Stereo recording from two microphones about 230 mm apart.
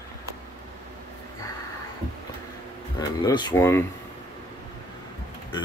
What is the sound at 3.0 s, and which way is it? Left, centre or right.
Speech, centre.